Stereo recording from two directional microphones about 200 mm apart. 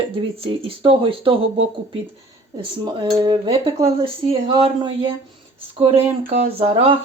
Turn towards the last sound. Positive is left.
turn(degrees=-30)  # may be behind; listen again after turning